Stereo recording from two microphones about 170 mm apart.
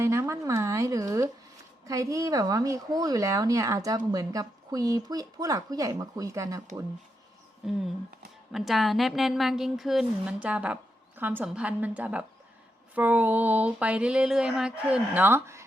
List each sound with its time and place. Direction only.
0.0 s speech: 15° right (ahead or behind)
7.6 s a woman's voice: 5° right (ahead or behind)
11.2 s a sound: 10° right (ahead or behind)